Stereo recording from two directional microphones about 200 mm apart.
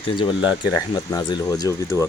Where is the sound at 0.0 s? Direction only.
25° left (ahead or behind).